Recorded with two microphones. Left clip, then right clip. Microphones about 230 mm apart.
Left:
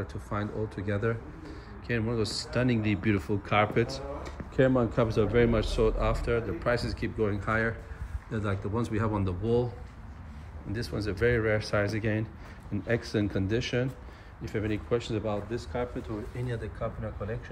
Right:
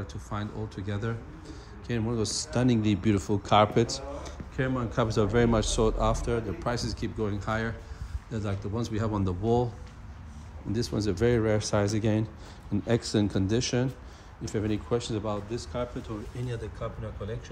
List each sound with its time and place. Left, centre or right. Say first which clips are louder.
0.0 s a man's voice: left 2 dB; centre
4.6 s a man's voice: left 5 dB; centre
5.0 s a man's voice: right 3 dB; centre
10.7 s a man's voice: right 4 dB; right; by 17.4 s centre